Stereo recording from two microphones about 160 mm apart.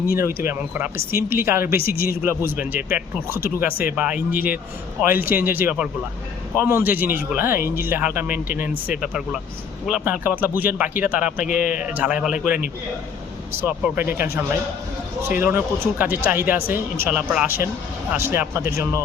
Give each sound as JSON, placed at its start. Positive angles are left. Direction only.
{"t": 0.2, "sound": "speech", "side_deg": -15}
{"t": 1.8, "sound": "a man's voice", "side_deg": 65}
{"t": 2.2, "sound": "speech", "side_deg": -10}
{"t": 3.7, "sound": "speech", "side_deg": 65}
{"t": 3.9, "sound": "speech", "side_deg": -10}
{"t": 11.4, "sound": "speech", "side_deg": 60}
{"t": 11.8, "sound": "speech", "side_deg": -10}
{"t": 13.6, "sound": "speech", "side_deg": -10}
{"t": 16.6, "sound": "speech", "side_deg": 65}
{"t": 17.0, "sound": "speech", "side_deg": -10}